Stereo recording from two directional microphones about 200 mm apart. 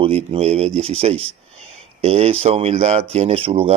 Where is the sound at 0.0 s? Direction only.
30° right (ahead or behind).